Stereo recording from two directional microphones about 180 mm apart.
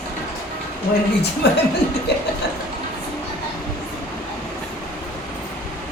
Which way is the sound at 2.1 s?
65° left (ahead or behind).